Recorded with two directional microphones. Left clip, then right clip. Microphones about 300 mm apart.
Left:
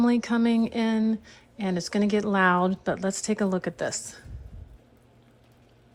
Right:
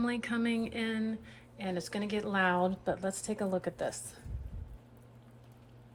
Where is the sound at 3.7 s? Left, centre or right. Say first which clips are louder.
Left 6 dB; left.